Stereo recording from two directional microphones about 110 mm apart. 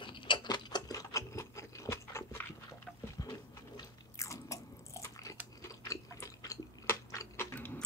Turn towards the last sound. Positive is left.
turn(degrees=20)  # may be behind; listen again after turning